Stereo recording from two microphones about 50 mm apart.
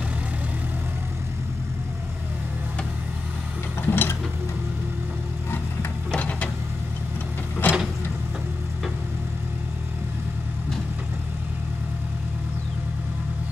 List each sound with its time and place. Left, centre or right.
3.8 s ratchet: left
6.1 s printer: left
7.6 s a sound: left